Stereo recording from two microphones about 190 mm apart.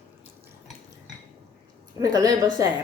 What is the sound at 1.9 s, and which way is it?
Speech, 20° right (ahead or behind).